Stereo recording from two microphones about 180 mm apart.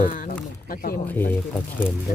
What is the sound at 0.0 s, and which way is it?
Speech, 50° left (ahead or behind).